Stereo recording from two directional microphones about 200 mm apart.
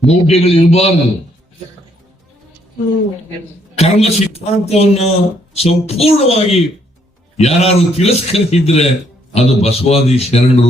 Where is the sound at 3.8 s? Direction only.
30° left (ahead or behind).